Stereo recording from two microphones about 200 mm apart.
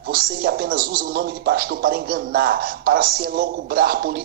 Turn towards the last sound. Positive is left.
turn(degrees=-50)  # may be behind; listen again after turning